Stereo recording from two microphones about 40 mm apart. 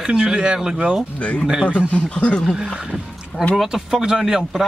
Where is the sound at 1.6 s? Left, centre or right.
Right.